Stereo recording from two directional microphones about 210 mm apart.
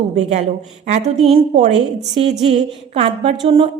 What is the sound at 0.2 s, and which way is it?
A woman's voice, 30° right (ahead or behind).